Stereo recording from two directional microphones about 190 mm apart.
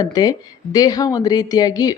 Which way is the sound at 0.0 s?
20° left (ahead or behind).